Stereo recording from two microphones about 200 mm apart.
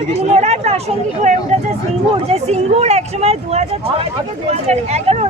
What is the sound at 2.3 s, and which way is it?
Speech, 30° right (ahead or behind).